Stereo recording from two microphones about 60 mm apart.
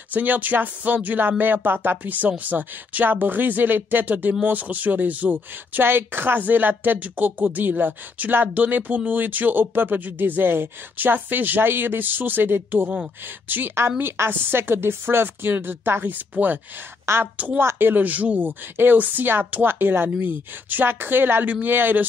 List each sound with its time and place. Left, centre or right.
0.1 s speech: right
17.0 s a woman's voice: right